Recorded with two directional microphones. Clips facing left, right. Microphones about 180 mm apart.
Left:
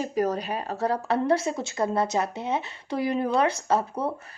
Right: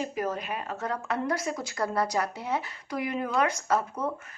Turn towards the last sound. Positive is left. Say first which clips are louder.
# left 3 dB
turn(degrees=30)  # may be behind; listen again after turning